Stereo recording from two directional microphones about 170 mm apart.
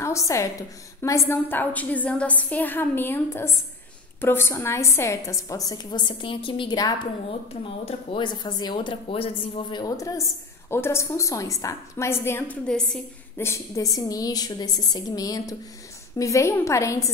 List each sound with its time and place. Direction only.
0.0 s a woman's voice: 15° left (ahead or behind)
13.4 s a woman's voice: 15° left (ahead or behind)